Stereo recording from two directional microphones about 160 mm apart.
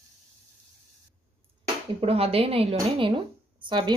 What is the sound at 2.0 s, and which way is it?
Speech, 35° right (ahead or behind).